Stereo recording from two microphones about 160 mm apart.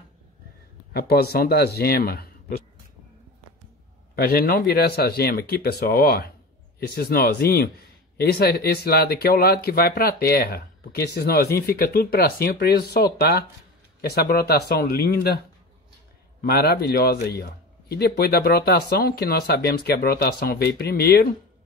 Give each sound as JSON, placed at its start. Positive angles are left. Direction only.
{"t": 0.9, "sound": "speech", "side_deg": 75}
{"t": 4.1, "sound": "speech", "side_deg": 75}